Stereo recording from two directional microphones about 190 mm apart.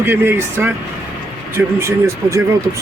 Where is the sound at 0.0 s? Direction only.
10° right (ahead or behind).